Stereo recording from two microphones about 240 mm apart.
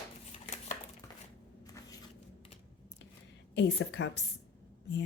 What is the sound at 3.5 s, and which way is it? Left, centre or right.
Speech, left.